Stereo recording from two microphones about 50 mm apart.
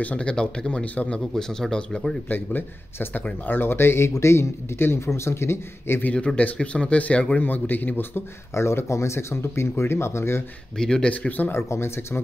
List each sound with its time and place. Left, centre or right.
0.0 s a man's voice: left
0.9 s a man's voice: left
1.3 s speech: centre
2.2 s speech: left
4.2 s speech: left
6.1 s a man's voice: left
8.5 s speech: left
10.8 s speech: centre
11.1 s speech: left
11.5 s speech: left